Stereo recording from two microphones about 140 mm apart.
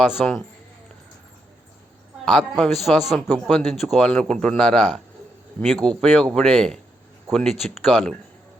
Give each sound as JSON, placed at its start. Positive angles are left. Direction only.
{"t": 0.2, "sound": "speech", "side_deg": 5}
{"t": 2.2, "sound": "speech", "side_deg": 0}